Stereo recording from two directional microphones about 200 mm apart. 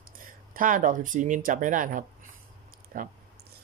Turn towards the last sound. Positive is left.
turn(degrees=-40)  # may be behind; listen again after turning